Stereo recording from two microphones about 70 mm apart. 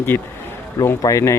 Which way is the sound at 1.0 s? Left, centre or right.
Left.